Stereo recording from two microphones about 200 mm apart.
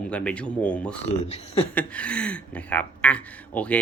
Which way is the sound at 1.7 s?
5° left (ahead or behind).